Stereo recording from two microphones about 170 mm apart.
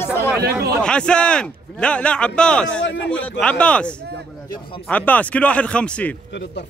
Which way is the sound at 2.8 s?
90° left.